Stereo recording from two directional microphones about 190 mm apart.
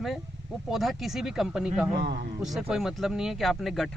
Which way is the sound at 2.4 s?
Centre (ahead or behind).